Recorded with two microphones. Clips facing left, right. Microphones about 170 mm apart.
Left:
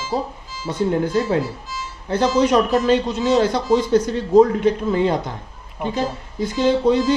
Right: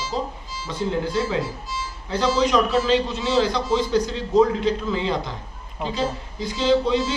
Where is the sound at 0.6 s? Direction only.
50° left (ahead or behind).